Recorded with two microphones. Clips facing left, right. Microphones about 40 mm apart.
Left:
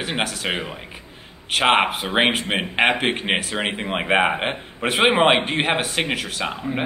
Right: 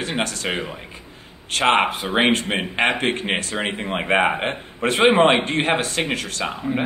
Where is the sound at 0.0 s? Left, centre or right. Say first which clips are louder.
Even; centre.